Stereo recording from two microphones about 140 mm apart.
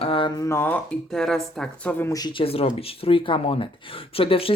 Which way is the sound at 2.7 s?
40° left (ahead or behind).